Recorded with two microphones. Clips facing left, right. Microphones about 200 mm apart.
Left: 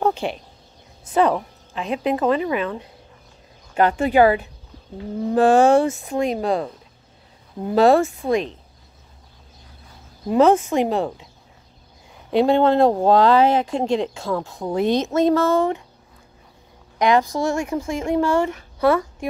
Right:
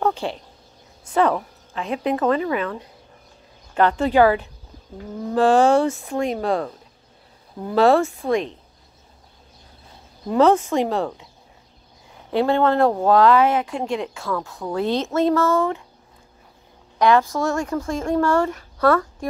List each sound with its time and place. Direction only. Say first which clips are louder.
0.0 s a sound: left 1 dB; 20° left (ahead or behind)
1.3 s speech: left 1 dB; 20° left (ahead or behind)
10.2 s speech: left 1 dB; 20° left (ahead or behind)
12.3 s speech: left 2 dB; 20° left (ahead or behind)
17.0 s speech: even; 15° left (ahead or behind)